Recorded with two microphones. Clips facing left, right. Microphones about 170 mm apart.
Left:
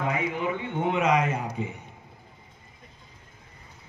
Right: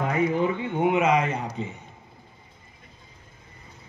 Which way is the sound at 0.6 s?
15° right (ahead or behind).